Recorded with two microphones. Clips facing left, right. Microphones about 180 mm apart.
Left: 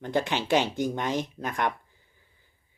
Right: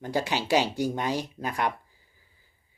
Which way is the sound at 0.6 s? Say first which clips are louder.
Right 1 dB; 40° right (ahead or behind).